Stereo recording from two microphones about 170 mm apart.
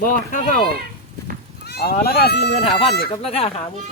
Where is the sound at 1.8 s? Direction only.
65° left (ahead or behind); by 2.6 s 80° left.